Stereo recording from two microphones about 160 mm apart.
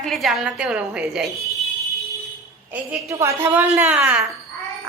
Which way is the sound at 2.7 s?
15° right (ahead or behind).